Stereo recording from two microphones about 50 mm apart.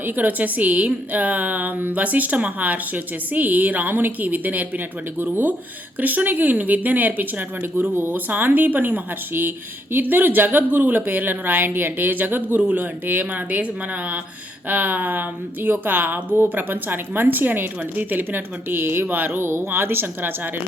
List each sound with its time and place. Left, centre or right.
0.0 s a woman's voice: right
7.6 s a woman's voice: right
14.7 s a woman's voice: right